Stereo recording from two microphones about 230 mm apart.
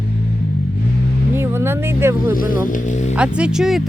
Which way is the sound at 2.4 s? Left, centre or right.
Left.